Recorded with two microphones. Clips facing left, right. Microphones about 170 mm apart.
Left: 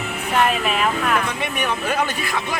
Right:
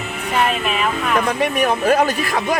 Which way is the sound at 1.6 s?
35° right (ahead or behind).